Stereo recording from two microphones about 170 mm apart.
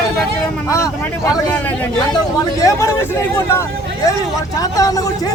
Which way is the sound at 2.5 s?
20° left (ahead or behind).